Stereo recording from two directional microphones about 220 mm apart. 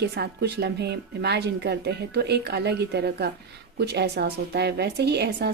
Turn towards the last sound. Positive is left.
turn(degrees=-50)  # may be behind; listen again after turning